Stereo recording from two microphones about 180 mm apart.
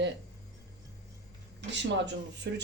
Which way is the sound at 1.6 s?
75° right (ahead or behind).